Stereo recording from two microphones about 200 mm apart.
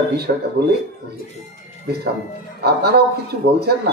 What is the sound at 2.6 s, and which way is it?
Speech, 55° right (ahead or behind).